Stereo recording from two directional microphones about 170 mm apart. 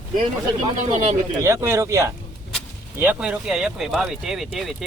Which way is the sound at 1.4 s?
15° right (ahead or behind).